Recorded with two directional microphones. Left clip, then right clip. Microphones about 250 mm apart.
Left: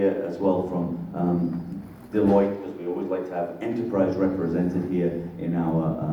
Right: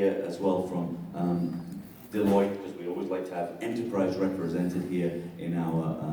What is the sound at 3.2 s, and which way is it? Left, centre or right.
A man's voice, right.